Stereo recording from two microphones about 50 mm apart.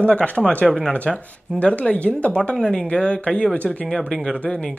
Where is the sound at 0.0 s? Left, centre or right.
Left.